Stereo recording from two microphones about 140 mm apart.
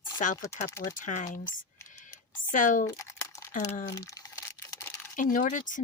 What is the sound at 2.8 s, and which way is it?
Crumpling, 20° left (ahead or behind).